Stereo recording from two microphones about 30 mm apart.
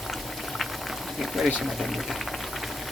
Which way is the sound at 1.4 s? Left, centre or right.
Centre.